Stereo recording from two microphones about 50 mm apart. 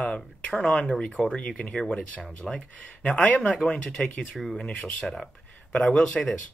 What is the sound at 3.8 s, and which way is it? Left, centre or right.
Speech, centre.